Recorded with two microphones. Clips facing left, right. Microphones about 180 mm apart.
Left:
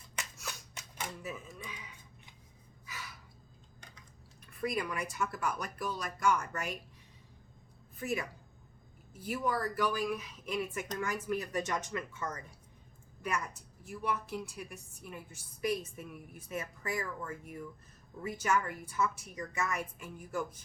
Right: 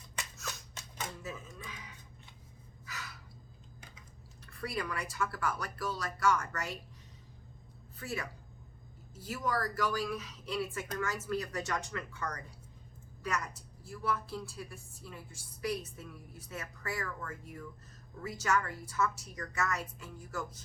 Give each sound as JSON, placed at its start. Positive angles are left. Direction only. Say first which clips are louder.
{"t": 0.3, "sound": "a sound", "louder": "right 1 dB", "side_deg": 15}
{"t": 4.4, "sound": "speech", "louder": "left 3 dB", "side_deg": 20}
{"t": 7.9, "sound": "a woman's voice", "louder": "left 4 dB", "side_deg": 20}
{"t": 13.8, "sound": "a woman's voice", "louder": "even", "side_deg": 15}